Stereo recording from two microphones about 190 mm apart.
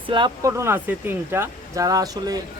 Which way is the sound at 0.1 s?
20° right (ahead or behind).